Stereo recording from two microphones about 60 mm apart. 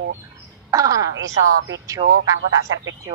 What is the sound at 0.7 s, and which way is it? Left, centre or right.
A woman's voice, right.